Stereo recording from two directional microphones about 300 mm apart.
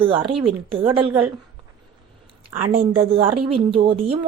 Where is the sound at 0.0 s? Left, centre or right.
Centre.